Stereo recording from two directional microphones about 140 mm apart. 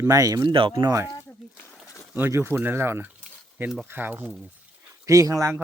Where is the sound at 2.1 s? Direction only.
15° right (ahead or behind).